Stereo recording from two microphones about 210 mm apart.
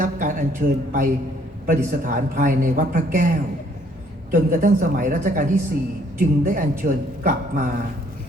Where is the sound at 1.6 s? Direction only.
40° right (ahead or behind).